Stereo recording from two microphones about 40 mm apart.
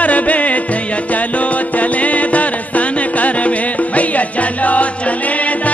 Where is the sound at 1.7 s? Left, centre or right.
Left.